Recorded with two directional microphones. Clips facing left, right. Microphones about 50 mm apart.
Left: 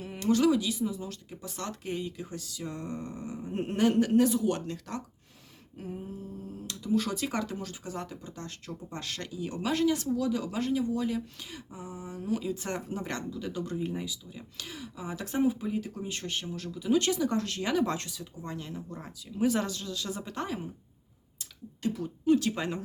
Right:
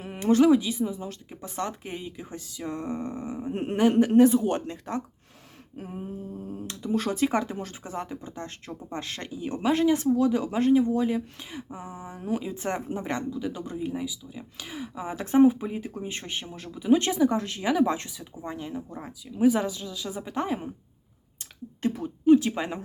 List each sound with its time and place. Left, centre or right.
0.0 s speech: right
5.7 s a sound: right
6.5 s speech: right; by 14.7 s centre
14.7 s speech: right
21.3 s a sound: right
22.0 s speech: centre